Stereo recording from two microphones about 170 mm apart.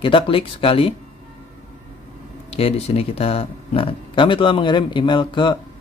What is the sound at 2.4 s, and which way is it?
Speech, 35° left (ahead or behind).